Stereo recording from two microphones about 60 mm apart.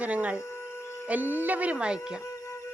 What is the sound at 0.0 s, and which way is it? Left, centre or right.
Music, right.